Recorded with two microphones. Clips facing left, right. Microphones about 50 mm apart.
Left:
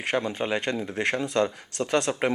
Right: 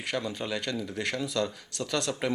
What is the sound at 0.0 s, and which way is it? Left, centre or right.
Speech, left.